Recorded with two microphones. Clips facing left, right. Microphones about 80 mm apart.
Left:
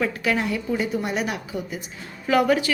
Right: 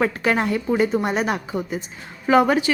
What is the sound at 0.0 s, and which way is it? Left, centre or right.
A woman's voice, right.